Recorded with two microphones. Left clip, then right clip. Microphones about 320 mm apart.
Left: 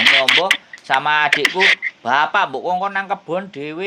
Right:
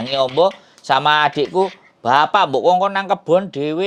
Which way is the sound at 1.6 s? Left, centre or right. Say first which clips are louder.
Left 4 dB; right.